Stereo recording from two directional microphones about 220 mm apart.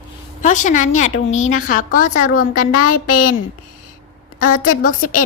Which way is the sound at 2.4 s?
90° left.